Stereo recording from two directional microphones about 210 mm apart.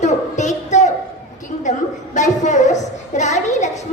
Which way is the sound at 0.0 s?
35° left (ahead or behind).